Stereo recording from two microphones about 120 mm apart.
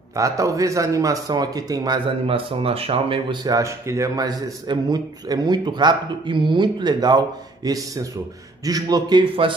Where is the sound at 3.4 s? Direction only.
25° right (ahead or behind).